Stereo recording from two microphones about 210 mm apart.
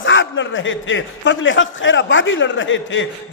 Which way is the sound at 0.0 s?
65° left (ahead or behind).